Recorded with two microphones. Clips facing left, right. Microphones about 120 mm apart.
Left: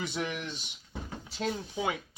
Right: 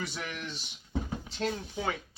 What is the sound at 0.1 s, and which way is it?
Speech, 15° left (ahead or behind).